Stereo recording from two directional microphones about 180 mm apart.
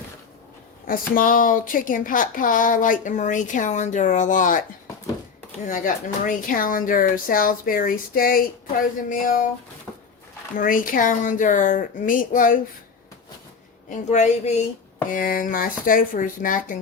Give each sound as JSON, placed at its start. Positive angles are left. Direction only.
{"t": 0.9, "sound": "speech", "side_deg": 50}
{"t": 5.6, "sound": "speech", "side_deg": 45}
{"t": 10.6, "sound": "speech", "side_deg": 50}
{"t": 13.9, "sound": "speech", "side_deg": 40}
{"t": 15.1, "sound": "speech", "side_deg": 50}